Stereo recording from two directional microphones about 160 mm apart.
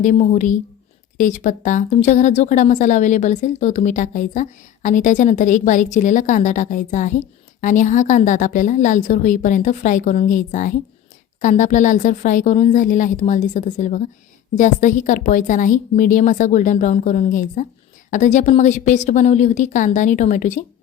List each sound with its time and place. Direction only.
0.0 s a woman's voice: 50° left (ahead or behind)